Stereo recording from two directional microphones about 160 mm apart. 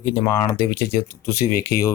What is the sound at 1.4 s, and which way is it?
Speech, 70° left (ahead or behind).